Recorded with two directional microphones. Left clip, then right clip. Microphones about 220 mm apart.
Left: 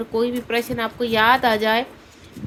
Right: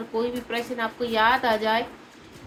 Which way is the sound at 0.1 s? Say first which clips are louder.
Left 5 dB; 55° left (ahead or behind).